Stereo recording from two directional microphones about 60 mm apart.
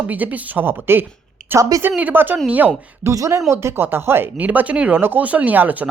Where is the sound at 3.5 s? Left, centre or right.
Right.